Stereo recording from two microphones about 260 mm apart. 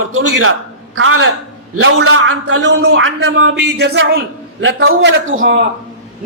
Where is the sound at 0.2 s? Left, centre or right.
Right.